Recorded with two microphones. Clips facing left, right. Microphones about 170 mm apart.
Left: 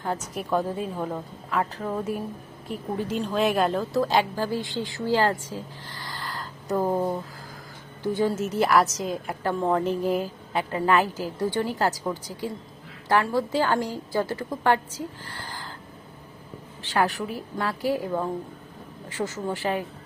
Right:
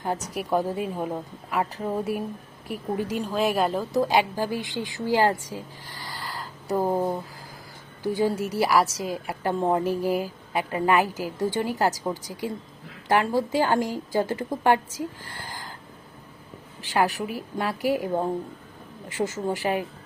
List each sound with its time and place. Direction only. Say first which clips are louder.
0.3 s a woman's voice: right 1 dB; 10° right (ahead or behind)
3.9 s a woman's voice: right 3 dB; 15° right (ahead or behind)
15.3 s a sound: even; 15° right (ahead or behind)
16.8 s a woman's voice: right 1 dB; 10° right (ahead or behind)
19.1 s a woman's voice: right 2 dB; 15° right (ahead or behind)